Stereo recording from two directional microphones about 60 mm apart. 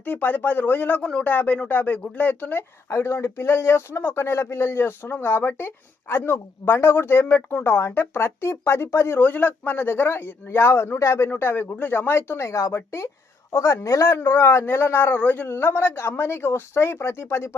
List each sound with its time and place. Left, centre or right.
0.0 s speech: left
1.0 s a man's voice: centre
2.9 s speech: left
9.2 s speech: left
11.3 s speech: left
12.4 s speech: left